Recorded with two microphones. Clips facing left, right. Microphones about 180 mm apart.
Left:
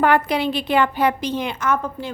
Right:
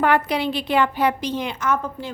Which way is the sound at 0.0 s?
50° left (ahead or behind).